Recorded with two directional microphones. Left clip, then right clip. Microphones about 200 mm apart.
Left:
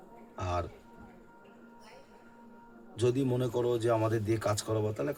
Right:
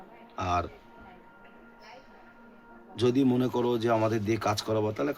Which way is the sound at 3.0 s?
5° left (ahead or behind).